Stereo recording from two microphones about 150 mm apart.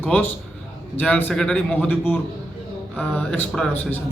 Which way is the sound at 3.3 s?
5° left (ahead or behind).